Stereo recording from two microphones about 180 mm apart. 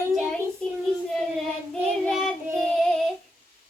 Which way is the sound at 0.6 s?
5° left (ahead or behind).